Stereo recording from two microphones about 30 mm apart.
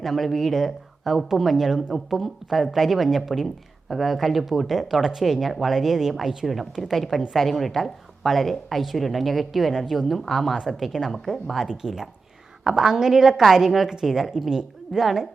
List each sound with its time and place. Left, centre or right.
0.0 s speech: centre
1.0 s a woman's voice: centre
10.8 s speech: centre
11.7 s a woman's voice: centre